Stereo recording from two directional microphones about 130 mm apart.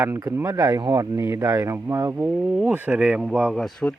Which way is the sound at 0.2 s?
25° right (ahead or behind).